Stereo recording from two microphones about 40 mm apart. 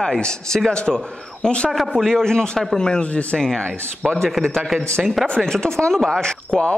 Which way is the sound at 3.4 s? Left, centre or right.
Centre.